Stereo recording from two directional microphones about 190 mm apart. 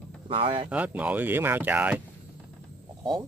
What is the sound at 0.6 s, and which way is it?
Speech, 5° right (ahead or behind).